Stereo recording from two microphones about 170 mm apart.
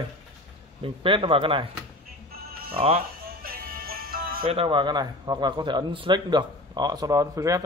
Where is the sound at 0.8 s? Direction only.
30° right (ahead or behind).